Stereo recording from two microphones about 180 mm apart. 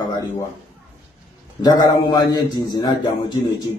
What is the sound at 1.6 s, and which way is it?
Speech, 20° left (ahead or behind).